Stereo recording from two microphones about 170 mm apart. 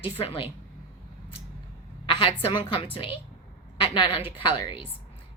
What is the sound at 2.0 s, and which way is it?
A woman's voice, 30° left (ahead or behind).